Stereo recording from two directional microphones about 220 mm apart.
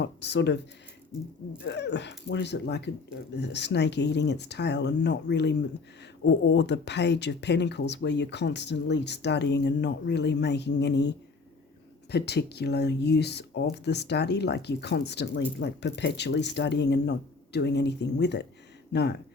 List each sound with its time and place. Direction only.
0.0 s speech: 50° left (ahead or behind)
12.1 s speech: 50° left (ahead or behind)